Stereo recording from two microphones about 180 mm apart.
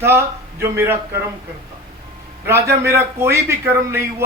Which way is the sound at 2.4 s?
15° right (ahead or behind).